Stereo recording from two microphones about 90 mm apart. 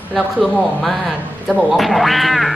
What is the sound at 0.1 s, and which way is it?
A man's voice, centre (ahead or behind).